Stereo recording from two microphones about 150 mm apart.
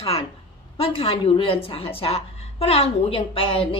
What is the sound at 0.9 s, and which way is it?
A woman's voice, 35° left (ahead or behind).